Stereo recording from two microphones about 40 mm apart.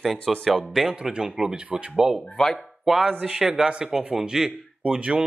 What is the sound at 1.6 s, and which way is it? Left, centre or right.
Speech, right.